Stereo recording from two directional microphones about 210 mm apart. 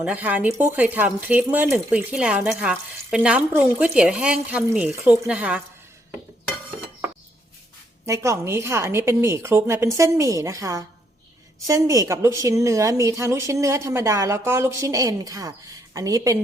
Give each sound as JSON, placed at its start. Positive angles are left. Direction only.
{"t": 0.0, "sound": "speech", "side_deg": -5}
{"t": 8.0, "sound": "a woman's voice", "side_deg": -15}